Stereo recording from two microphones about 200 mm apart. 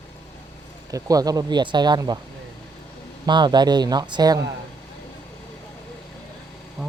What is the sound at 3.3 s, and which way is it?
Speech, 20° right (ahead or behind).